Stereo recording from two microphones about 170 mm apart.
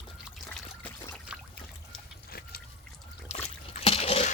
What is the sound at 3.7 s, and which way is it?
Liquid, 35° left (ahead or behind).